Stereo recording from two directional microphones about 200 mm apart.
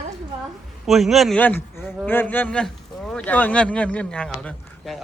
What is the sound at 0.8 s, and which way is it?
A man's voice, centre (ahead or behind).